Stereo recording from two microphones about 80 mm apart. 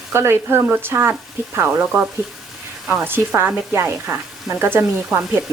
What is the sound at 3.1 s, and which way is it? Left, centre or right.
Speech, right.